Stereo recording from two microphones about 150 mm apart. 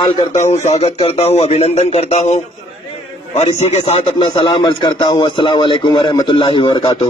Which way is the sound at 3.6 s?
40° left (ahead or behind).